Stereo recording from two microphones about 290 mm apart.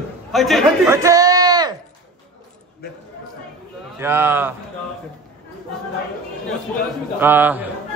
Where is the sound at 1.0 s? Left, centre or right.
Centre.